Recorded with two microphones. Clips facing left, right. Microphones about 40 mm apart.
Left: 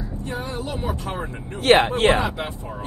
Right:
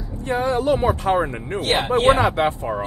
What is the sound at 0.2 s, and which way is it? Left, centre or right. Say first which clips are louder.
Speech: right 10 dB; right.